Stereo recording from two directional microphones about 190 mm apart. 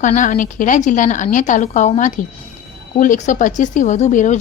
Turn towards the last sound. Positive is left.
turn(degrees=40)  # may be behind; listen again after turning